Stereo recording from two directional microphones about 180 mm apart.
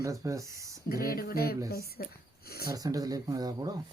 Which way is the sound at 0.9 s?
55° left (ahead or behind).